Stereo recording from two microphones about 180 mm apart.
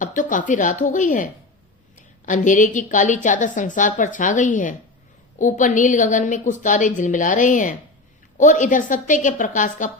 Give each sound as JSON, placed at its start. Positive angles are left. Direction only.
{"t": 0.0, "sound": "a woman's voice", "side_deg": 45}